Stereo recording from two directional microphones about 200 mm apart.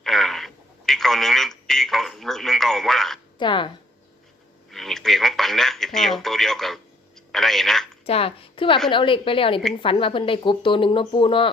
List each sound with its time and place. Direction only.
0.0 s speech: centre (ahead or behind)
3.3 s speech: 25° left (ahead or behind)
4.7 s speech: centre (ahead or behind)
8.0 s speech: 30° left (ahead or behind)